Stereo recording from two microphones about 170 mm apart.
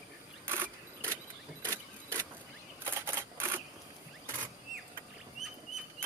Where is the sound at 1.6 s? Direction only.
15° right (ahead or behind).